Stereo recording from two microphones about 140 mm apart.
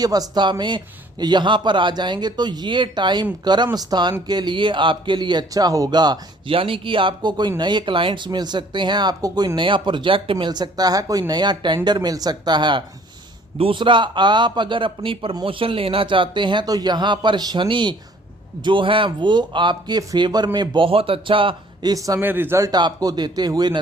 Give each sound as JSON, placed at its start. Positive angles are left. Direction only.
{"t": 0.0, "sound": "speech", "side_deg": -25}